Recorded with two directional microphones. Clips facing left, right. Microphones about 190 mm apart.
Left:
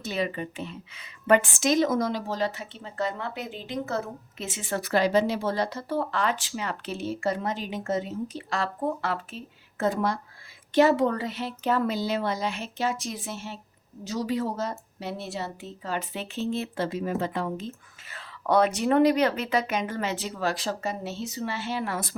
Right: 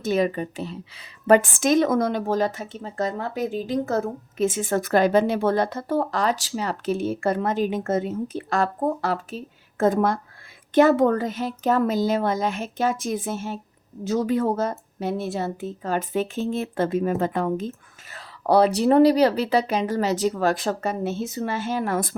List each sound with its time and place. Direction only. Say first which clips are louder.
0.0 s a woman's voice: right 7 dB; 45° right (ahead or behind)
18.1 s speech: right 4 dB; 35° right (ahead or behind)